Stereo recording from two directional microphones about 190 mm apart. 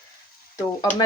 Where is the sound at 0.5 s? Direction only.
20° left (ahead or behind).